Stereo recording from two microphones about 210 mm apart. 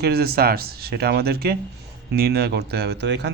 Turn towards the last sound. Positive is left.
turn(degrees=-55)  # may be behind; listen again after turning